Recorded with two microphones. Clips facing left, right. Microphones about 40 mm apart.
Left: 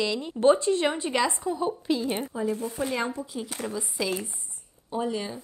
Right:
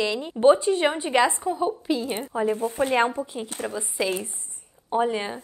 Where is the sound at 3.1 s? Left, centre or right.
Right.